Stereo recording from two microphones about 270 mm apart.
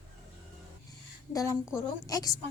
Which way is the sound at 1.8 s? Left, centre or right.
Centre.